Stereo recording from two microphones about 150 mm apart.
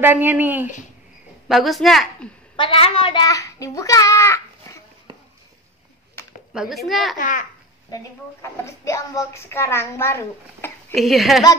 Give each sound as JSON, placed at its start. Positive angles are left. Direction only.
{"t": 0.0, "sound": "speech", "side_deg": -15}
{"t": 1.5, "sound": "a woman's voice", "side_deg": 0}
{"t": 2.5, "sound": "a child's voice", "side_deg": 35}
{"t": 6.5, "sound": "a woman's voice", "side_deg": 0}
{"t": 7.2, "sound": "a child's voice", "side_deg": 60}
{"t": 7.9, "sound": "a child's voice", "side_deg": 20}
{"t": 11.0, "sound": "a woman's voice", "side_deg": 0}